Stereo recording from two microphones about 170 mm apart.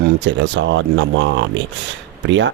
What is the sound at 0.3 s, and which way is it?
Speech, 90° right.